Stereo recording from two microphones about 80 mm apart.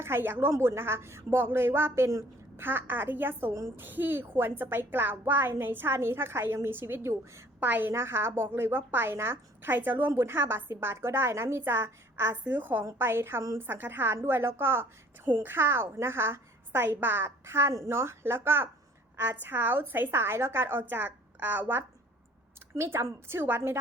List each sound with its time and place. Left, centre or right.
0.0 s a woman's voice: right
7.6 s a woman's voice: right
22.7 s a woman's voice: right